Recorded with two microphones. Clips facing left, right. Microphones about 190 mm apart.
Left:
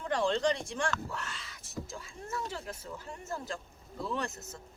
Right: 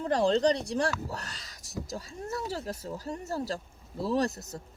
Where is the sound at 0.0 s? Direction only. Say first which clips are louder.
Right 5 dB; 35° right (ahead or behind).